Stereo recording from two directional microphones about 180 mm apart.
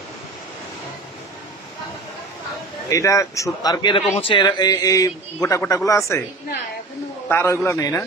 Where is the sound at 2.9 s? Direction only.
15° left (ahead or behind).